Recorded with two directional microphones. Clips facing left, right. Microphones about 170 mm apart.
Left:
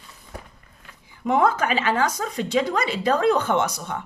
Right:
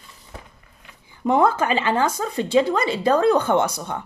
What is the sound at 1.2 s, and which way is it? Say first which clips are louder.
Speech: right 2 dB; 35° right (ahead or behind).